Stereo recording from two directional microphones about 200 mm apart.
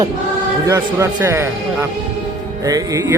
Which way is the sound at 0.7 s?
15° right (ahead or behind).